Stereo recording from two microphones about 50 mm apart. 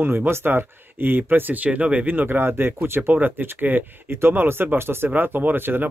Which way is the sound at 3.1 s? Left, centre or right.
Right.